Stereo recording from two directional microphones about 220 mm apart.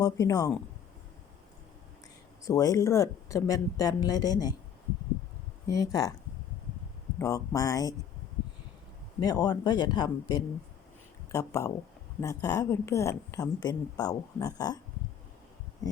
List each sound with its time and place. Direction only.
0.0 s a woman's voice: 15° left (ahead or behind)
2.4 s a woman's voice: 15° left (ahead or behind)
5.6 s a woman's voice: 15° left (ahead or behind)
7.2 s a woman's voice: 15° left (ahead or behind)
9.2 s a woman's voice: 15° left (ahead or behind)